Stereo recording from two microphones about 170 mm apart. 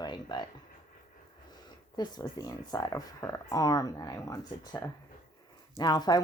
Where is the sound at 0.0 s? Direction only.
25° left (ahead or behind).